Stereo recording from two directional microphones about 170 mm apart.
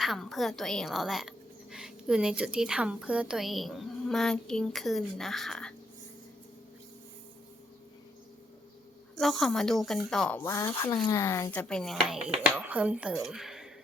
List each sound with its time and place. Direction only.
0.0 s speech: centre (ahead or behind)
9.1 s speech: centre (ahead or behind)
11.7 s speech: centre (ahead or behind)